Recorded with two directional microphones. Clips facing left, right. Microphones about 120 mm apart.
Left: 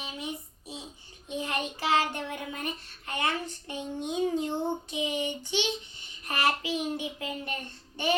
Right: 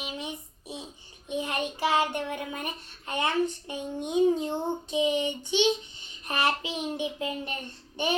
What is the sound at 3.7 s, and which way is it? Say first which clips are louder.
Speech: right 3 dB; 20° right (ahead or behind).